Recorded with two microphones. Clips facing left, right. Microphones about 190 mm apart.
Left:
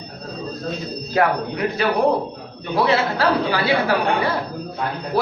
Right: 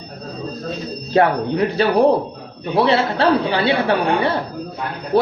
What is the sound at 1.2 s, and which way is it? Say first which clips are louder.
A woman's voice: right 4 dB; 30° right (ahead or behind).